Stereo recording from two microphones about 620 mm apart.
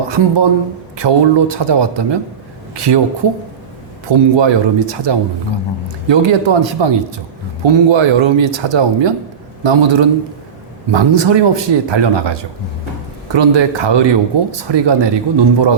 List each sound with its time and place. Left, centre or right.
0.1 s speech: right